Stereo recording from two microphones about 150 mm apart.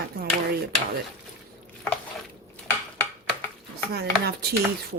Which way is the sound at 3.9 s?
90° right.